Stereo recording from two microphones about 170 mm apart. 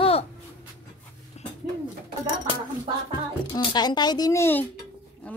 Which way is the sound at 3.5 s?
25° left (ahead or behind).